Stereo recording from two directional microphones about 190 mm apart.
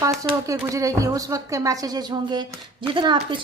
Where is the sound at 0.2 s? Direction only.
15° right (ahead or behind).